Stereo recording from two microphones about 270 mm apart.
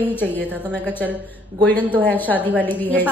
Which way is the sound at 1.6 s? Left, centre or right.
Centre.